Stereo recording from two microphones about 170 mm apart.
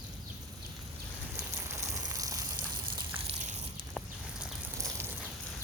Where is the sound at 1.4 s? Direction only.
15° right (ahead or behind).